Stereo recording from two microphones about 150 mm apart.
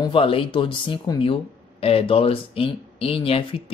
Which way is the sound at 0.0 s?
35° left (ahead or behind).